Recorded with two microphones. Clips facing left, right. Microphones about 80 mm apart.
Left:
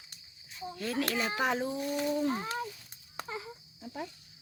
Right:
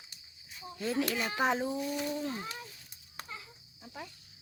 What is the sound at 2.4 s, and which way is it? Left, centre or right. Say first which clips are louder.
Speech: left 6 dB; left.